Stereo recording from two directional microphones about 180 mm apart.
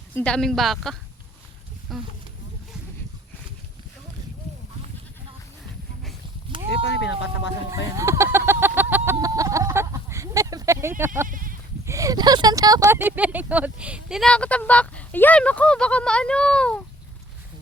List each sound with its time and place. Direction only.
0.1 s speech: 10° left (ahead or behind)
6.7 s speech: 75° left (ahead or behind)
7.9 s a sound: 15° right (ahead or behind)
11.3 s sheep: 50° right (ahead or behind)
11.9 s speech: 20° right (ahead or behind); by 16.8 s 5° left (ahead or behind)